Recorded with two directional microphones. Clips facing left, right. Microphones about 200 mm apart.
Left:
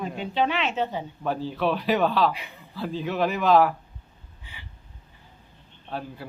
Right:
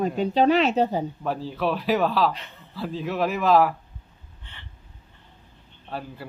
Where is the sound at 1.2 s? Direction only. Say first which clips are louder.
Even; centre (ahead or behind).